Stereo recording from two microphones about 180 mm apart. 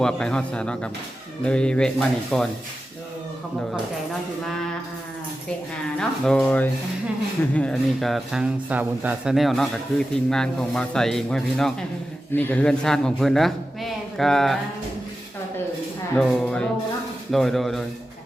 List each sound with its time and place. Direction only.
0.0 s speech: 5° left (ahead or behind)
6.0 s speech: 5° left (ahead or behind)
16.1 s speech: 5° left (ahead or behind)